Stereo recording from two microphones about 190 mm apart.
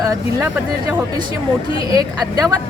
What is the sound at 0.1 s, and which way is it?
Speech, 15° right (ahead or behind).